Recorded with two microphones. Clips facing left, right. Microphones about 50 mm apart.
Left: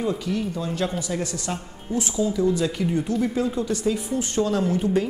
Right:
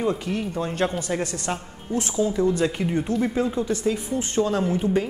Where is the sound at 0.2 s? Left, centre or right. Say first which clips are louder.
Even; right.